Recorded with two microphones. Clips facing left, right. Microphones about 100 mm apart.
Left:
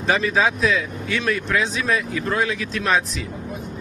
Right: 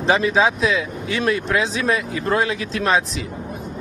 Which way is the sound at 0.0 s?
25° right (ahead or behind).